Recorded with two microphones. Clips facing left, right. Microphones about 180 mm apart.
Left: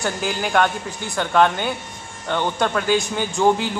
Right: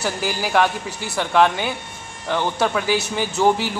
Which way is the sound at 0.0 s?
5° right (ahead or behind).